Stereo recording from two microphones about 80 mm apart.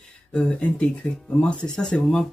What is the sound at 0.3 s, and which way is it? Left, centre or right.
Speech, centre.